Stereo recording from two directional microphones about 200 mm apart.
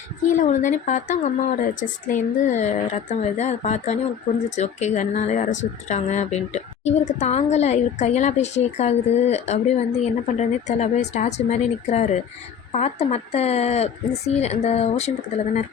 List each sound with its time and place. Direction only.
0.3 s speech: 40° left (ahead or behind)